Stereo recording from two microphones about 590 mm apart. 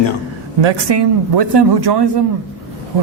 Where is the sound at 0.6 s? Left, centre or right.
Right.